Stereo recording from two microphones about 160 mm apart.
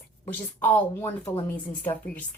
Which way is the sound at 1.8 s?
10° left (ahead or behind).